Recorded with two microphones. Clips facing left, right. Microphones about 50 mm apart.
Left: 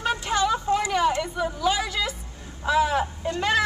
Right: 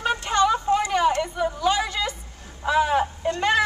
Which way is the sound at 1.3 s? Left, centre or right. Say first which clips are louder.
Right 2 dB; centre.